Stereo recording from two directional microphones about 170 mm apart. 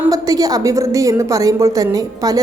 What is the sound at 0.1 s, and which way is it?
A woman's voice, 20° right (ahead or behind).